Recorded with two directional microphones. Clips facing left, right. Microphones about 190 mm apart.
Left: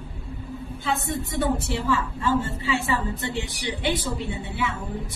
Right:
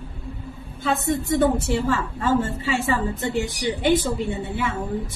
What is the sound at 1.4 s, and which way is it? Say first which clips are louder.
A woman's voice: right 3 dB; 45° right (ahead or behind).